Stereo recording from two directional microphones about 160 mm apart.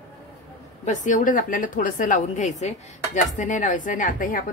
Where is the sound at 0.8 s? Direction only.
50° left (ahead or behind).